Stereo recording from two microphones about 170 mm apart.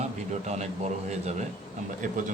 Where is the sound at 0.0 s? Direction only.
40° right (ahead or behind).